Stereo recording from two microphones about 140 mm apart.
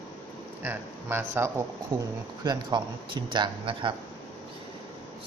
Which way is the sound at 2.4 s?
30° right (ahead or behind).